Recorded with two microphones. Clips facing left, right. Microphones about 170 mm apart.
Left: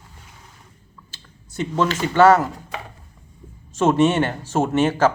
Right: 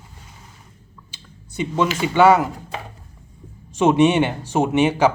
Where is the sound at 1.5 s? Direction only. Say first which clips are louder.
Even; 10° right (ahead or behind).